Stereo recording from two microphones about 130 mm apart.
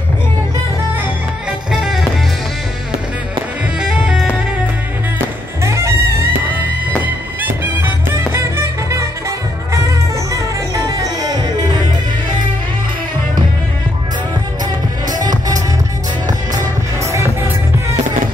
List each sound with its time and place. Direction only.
1.7 s music: 5° right (ahead or behind)
3.8 s music: 5° right (ahead or behind)
5.6 s music: 20° right (ahead or behind)
7.4 s music: 15° right (ahead or behind)
10.3 s music: 30° right (ahead or behind)
16.3 s music: 25° right (ahead or behind)